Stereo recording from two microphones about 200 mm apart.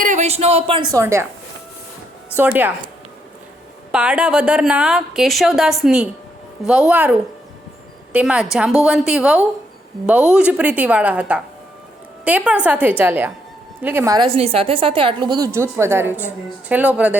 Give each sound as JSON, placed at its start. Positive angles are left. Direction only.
{"t": 0.0, "sound": "speech", "side_deg": -35}
{"t": 2.3, "sound": "a woman's voice", "side_deg": -10}
{"t": 3.9, "sound": "a woman's voice", "side_deg": -5}